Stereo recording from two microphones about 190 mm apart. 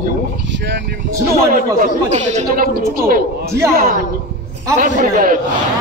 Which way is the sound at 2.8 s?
50° right (ahead or behind).